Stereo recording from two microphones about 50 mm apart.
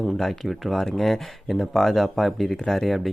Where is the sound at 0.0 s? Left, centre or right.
Centre.